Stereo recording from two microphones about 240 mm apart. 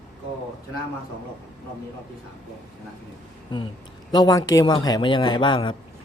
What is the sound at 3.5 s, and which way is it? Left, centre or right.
A man's voice, centre.